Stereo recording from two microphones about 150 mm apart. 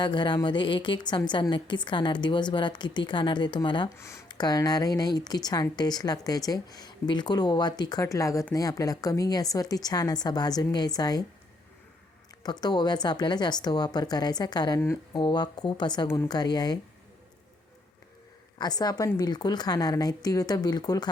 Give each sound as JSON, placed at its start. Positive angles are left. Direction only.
{"t": 0.0, "sound": "a woman's voice", "side_deg": 30}
{"t": 3.9, "sound": "speech", "side_deg": 20}
{"t": 12.4, "sound": "speech", "side_deg": 25}
{"t": 16.0, "sound": "a woman's voice", "side_deg": 15}
{"t": 16.3, "sound": "speech", "side_deg": 25}
{"t": 18.6, "sound": "speech", "side_deg": 25}